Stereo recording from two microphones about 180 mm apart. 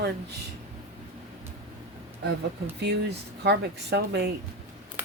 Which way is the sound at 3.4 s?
70° right (ahead or behind).